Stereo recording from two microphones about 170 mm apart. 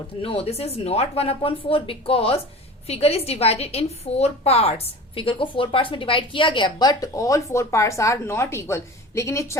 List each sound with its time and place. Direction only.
0.2 s a woman's voice: 35° left (ahead or behind); by 9.6 s 15° left (ahead or behind)